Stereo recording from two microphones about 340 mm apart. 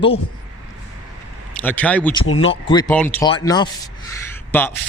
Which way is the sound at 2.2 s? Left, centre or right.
Left.